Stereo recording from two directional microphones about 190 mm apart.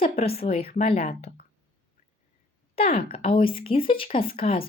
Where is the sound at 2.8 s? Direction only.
30° left (ahead or behind).